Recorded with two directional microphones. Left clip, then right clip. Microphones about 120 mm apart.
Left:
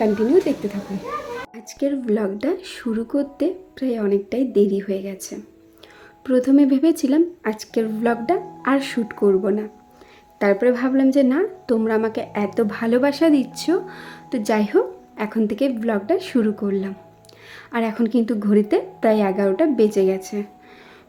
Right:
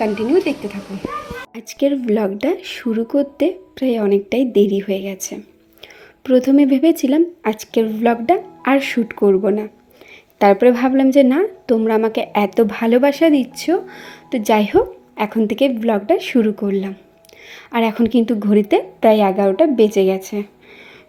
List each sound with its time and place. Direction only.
0.0 s a woman's voice: centre (ahead or behind)
1.5 s a woman's voice: 30° right (ahead or behind)
6.2 s a woman's voice: 15° right (ahead or behind)